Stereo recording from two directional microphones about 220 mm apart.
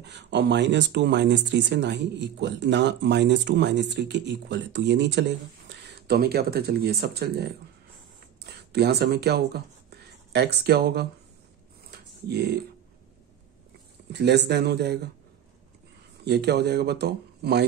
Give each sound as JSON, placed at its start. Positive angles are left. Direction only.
{"t": 0.0, "sound": "speech", "side_deg": -55}
{"t": 11.9, "sound": "a sound", "side_deg": -45}
{"t": 14.1, "sound": "speech", "side_deg": -50}
{"t": 16.3, "sound": "speech", "side_deg": -50}